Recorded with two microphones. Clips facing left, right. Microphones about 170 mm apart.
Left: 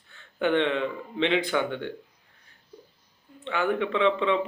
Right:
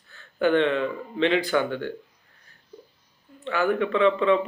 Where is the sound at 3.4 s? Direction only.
25° left (ahead or behind).